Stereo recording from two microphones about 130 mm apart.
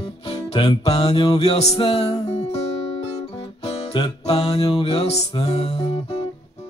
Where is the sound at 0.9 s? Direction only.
45° left (ahead or behind).